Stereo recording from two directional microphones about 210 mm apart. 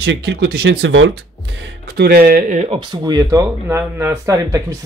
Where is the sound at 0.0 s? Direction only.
55° right (ahead or behind).